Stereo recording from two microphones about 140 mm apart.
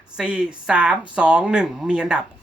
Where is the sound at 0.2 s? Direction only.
10° right (ahead or behind).